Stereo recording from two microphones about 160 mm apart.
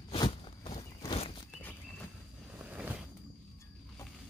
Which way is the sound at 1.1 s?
35° left (ahead or behind).